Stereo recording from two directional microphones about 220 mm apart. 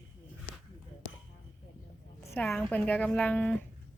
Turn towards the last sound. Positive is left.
turn(degrees=5)  # may be behind; listen again after turning